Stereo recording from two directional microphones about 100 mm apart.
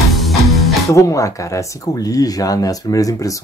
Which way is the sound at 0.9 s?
35° left (ahead or behind).